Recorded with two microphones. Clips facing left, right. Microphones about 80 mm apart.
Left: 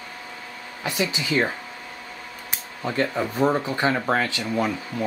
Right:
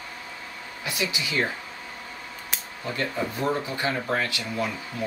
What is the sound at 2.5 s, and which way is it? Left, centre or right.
Speech, left.